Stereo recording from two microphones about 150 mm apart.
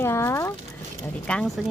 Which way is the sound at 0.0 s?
15° left (ahead or behind).